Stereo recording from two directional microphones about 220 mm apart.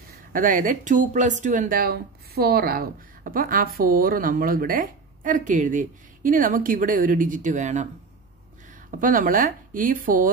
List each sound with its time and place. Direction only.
0.3 s speech: 40° right (ahead or behind)
8.9 s speech: 40° right (ahead or behind)